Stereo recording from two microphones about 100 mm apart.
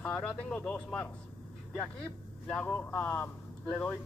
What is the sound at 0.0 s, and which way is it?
Speech, 10° left (ahead or behind).